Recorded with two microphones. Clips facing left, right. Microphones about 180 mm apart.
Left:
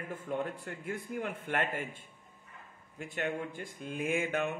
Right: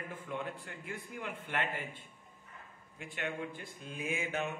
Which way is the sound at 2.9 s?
40° left (ahead or behind).